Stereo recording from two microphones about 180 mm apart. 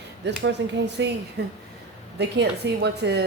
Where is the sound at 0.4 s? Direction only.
70° right (ahead or behind).